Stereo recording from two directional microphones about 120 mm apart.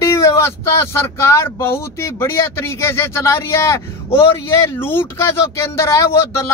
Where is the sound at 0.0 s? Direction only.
25° left (ahead or behind).